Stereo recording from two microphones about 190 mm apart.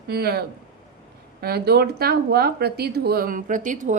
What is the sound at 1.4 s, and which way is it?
A woman's voice, 55° right (ahead or behind).